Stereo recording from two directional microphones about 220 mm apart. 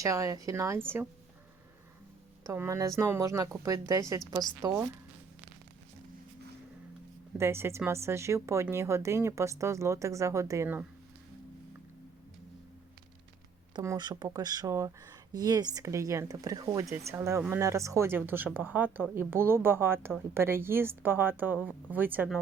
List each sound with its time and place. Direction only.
0.0 s speech: 15° right (ahead or behind)
2.4 s speech: 15° right (ahead or behind)
7.3 s speech: 10° right (ahead or behind)
13.7 s speech: 20° right (ahead or behind)